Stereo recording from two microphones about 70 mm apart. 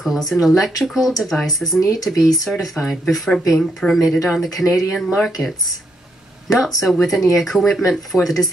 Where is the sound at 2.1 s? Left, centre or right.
Left.